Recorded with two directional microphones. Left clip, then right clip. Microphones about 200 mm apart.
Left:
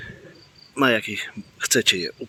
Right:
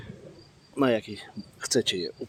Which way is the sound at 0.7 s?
Centre (ahead or behind).